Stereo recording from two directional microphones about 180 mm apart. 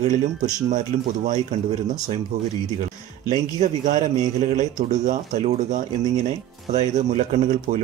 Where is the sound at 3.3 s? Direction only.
45° right (ahead or behind).